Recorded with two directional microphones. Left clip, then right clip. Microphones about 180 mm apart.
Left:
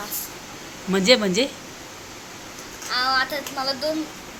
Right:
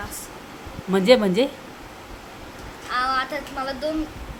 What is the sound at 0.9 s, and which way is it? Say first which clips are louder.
Speech: right 1 dB; 15° right (ahead or behind).